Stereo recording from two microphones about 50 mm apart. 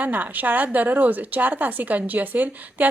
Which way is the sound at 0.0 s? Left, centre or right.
Right.